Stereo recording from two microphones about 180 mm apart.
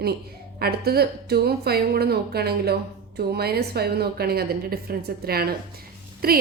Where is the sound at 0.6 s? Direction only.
60° right (ahead or behind).